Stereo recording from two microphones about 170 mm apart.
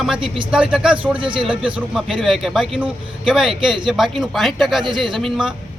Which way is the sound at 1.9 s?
Centre (ahead or behind).